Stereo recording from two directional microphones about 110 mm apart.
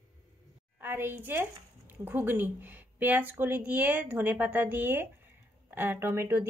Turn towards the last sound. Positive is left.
turn(degrees=-20)  # may be behind; listen again after turning